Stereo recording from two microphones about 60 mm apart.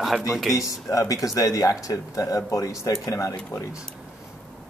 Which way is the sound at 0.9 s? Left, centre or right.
Left.